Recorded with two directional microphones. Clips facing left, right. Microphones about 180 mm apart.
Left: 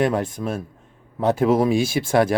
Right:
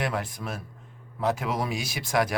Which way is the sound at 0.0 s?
25° left (ahead or behind).